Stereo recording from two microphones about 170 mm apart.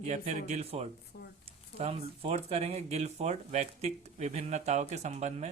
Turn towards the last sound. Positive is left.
turn(degrees=-40)  # may be behind; listen again after turning